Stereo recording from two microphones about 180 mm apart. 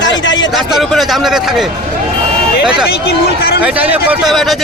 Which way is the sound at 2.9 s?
65° left (ahead or behind).